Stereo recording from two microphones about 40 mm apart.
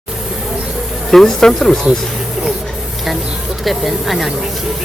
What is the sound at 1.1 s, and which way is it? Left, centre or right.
Speech, centre.